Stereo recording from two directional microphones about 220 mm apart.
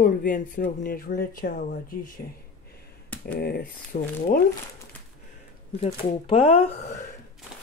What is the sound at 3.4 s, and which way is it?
Speech, 45° left (ahead or behind).